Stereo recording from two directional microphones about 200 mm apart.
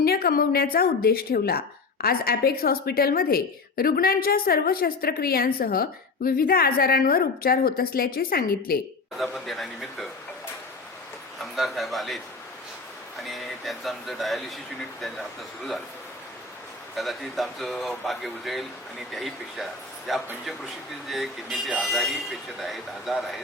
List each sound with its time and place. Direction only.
0.0 s speech: 50° left (ahead or behind)
9.1 s speech: centre (ahead or behind)
11.3 s speech: centre (ahead or behind)
13.2 s speech: centre (ahead or behind)
16.9 s speech: centre (ahead or behind)